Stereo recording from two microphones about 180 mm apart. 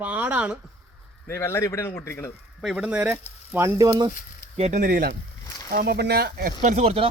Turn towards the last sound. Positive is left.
turn(degrees=-35)  # may be behind; listen again after turning